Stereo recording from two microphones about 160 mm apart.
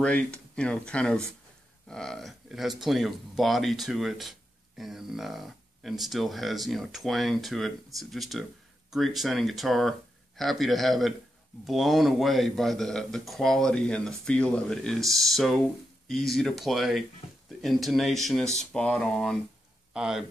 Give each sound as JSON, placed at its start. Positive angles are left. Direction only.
{"t": 0.0, "sound": "speech", "side_deg": 5}